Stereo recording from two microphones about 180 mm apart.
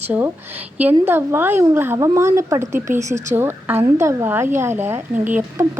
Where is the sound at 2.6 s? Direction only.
40° right (ahead or behind).